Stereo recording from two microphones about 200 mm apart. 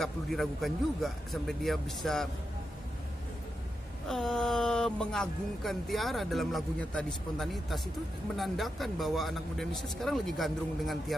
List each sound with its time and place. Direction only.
0.0 s speech: centre (ahead or behind)
4.1 s speech: centre (ahead or behind)